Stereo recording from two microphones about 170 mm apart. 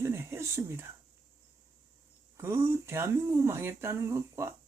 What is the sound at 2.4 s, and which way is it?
Speech, 15° right (ahead or behind).